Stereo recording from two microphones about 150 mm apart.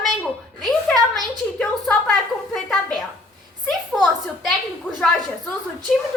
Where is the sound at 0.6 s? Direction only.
Centre (ahead or behind).